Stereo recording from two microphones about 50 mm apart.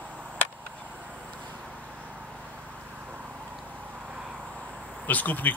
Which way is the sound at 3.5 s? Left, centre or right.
Centre.